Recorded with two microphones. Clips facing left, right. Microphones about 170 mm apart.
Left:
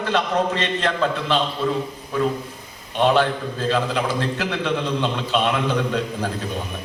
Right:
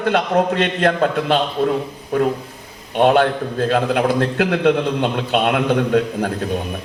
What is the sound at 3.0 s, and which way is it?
A man's voice, 55° right (ahead or behind).